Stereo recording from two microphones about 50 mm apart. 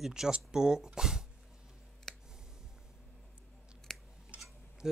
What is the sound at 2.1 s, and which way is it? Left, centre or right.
Clicking, centre.